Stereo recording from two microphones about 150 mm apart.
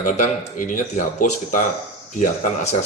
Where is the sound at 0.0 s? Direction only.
55° left (ahead or behind).